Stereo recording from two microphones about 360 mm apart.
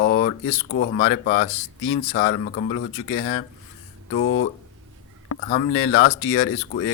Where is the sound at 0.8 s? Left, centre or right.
Left.